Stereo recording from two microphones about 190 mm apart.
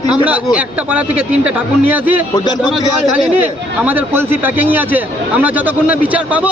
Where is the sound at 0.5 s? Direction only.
5° right (ahead or behind).